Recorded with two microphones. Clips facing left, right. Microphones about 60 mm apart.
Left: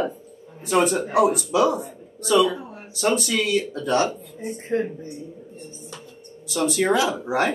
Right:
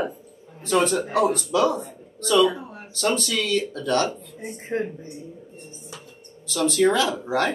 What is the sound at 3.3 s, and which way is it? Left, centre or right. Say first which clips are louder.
Speech: left 2 dB; left.